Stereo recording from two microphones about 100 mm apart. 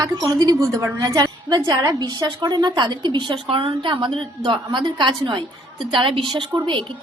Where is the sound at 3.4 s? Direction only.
65° right (ahead or behind).